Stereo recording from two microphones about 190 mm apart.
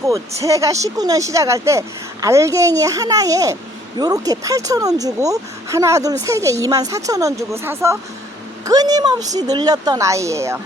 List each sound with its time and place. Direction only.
0.1 s speech: 15° right (ahead or behind)